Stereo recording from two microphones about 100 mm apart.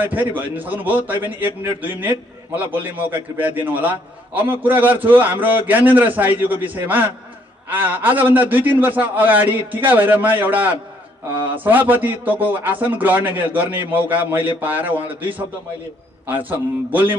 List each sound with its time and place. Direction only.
0.0 s a man's voice: 15° right (ahead or behind)
16.3 s a man's voice: 20° right (ahead or behind)